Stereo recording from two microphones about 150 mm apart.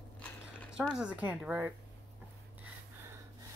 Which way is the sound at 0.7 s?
5° right (ahead or behind).